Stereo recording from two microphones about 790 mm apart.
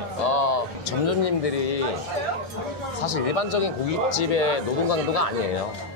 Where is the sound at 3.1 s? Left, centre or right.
Left.